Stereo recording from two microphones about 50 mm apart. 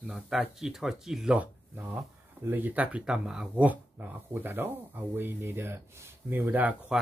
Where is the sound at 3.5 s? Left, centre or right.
Right.